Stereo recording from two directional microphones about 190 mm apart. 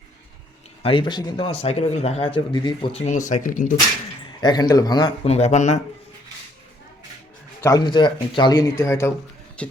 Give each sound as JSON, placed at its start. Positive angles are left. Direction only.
{"t": 0.8, "sound": "a man's voice", "side_deg": 25}
{"t": 4.4, "sound": "speech", "side_deg": 20}
{"t": 5.2, "sound": "a man's voice", "side_deg": 35}
{"t": 7.6, "sound": "speech", "side_deg": 20}